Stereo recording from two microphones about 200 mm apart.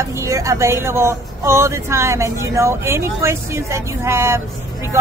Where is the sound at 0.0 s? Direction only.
15° right (ahead or behind).